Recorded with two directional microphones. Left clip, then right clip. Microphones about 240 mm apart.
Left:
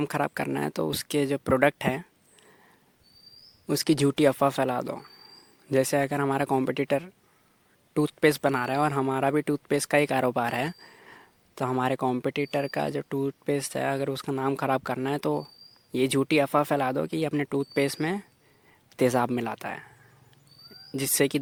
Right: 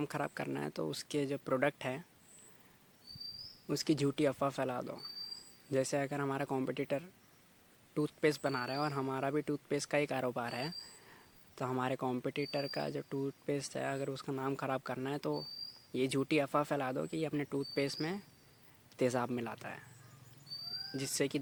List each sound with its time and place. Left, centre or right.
0.0 s speech: left
3.7 s speech: left
20.9 s speech: left